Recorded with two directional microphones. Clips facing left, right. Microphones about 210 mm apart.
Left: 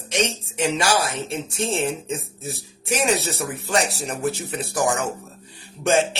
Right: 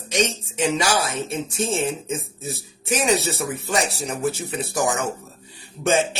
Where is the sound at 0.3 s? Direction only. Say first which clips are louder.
Right 1 dB; centre (ahead or behind).